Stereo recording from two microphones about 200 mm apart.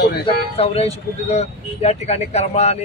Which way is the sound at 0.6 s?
30° left (ahead or behind).